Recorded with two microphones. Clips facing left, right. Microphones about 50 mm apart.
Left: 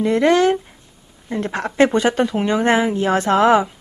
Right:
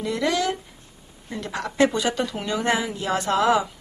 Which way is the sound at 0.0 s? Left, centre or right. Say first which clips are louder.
Left 9 dB; left.